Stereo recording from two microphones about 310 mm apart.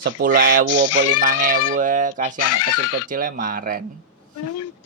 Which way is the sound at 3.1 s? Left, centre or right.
Right.